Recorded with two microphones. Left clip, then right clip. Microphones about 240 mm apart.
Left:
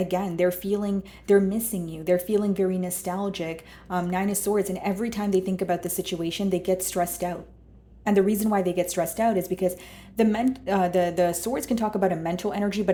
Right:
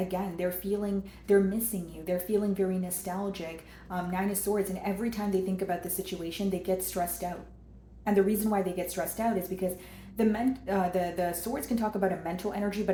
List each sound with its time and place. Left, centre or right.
0.1 s speech: left